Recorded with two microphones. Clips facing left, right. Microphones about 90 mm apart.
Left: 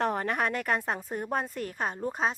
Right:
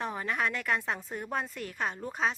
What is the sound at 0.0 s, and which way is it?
A woman's voice, 60° left (ahead or behind).